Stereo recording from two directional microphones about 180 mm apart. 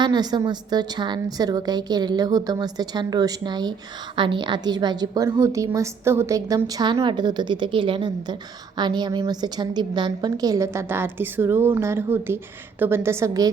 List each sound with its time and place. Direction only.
0.0 s a woman's voice: 25° right (ahead or behind)